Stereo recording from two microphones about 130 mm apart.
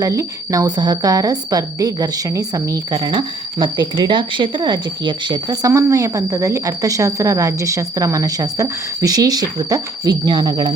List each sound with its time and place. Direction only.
0.0 s a woman's voice: 25° right (ahead or behind)